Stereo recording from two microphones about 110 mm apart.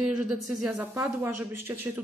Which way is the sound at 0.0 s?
10° right (ahead or behind).